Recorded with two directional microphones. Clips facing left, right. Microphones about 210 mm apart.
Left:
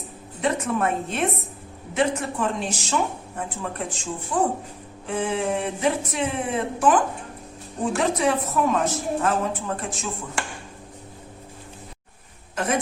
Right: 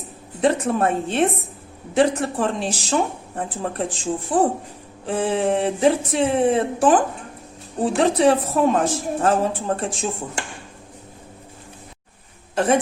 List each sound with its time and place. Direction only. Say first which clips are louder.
0.4 s a woman's voice: right 4 dB; 30° right (ahead or behind)
12.5 s a woman's voice: right 6 dB; 30° right (ahead or behind)